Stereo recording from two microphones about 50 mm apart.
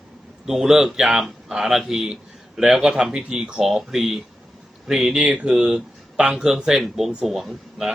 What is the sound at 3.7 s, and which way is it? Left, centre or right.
Speech, centre.